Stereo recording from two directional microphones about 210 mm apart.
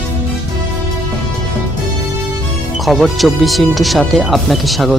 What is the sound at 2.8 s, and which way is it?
Speech, centre (ahead or behind).